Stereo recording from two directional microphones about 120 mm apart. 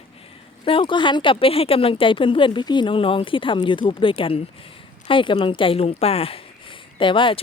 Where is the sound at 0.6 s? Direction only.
45° left (ahead or behind).